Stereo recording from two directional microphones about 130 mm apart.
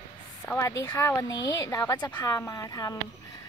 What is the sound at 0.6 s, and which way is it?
Speech, 20° left (ahead or behind).